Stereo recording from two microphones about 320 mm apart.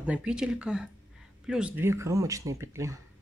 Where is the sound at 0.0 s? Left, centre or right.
Centre.